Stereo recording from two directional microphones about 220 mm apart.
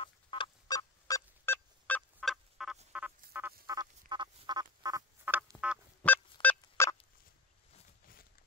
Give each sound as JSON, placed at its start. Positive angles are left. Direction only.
{"t": 0.0, "sound": "fowl", "side_deg": 20}
{"t": 3.3, "sound": "duck", "side_deg": -10}
{"t": 6.0, "sound": "honk", "side_deg": 5}
{"t": 6.4, "sound": "fowl", "side_deg": 10}